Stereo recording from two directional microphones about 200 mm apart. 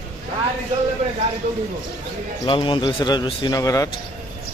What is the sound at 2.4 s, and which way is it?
Speech, 25° left (ahead or behind).